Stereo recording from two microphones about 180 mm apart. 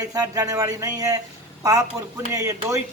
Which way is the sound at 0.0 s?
20° right (ahead or behind).